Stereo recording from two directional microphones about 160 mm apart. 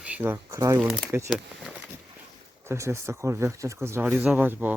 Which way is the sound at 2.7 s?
20° right (ahead or behind).